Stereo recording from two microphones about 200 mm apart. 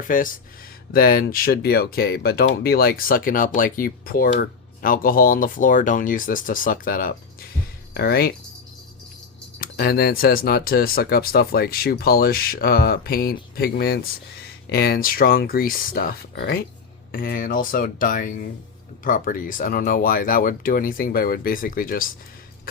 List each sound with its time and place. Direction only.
0.1 s speech: 45° left (ahead or behind)
9.6 s speech: 50° left (ahead or behind)